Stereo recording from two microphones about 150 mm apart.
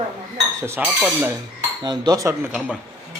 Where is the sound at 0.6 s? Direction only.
15° right (ahead or behind).